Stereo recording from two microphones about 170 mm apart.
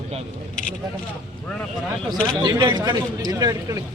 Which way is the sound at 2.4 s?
25° right (ahead or behind).